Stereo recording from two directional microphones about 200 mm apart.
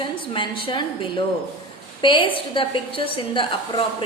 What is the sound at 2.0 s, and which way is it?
A woman's voice, 25° left (ahead or behind).